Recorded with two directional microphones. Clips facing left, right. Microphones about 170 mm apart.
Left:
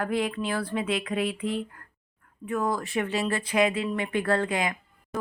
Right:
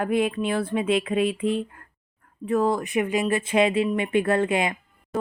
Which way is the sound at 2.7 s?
20° right (ahead or behind).